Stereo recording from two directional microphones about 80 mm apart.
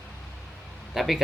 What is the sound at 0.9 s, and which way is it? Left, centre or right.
Speech, centre.